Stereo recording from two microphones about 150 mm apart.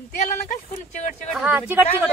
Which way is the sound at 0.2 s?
60° left (ahead or behind).